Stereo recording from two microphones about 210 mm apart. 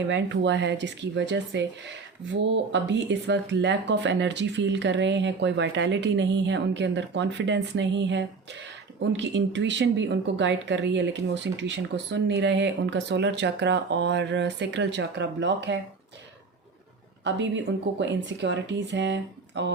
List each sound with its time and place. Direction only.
0.1 s speech: 60° right (ahead or behind)
17.2 s speech: 55° right (ahead or behind)